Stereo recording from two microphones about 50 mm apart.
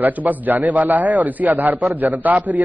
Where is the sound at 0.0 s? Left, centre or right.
Right.